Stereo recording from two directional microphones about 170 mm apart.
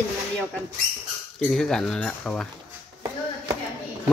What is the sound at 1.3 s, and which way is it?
Speech, 5° left (ahead or behind).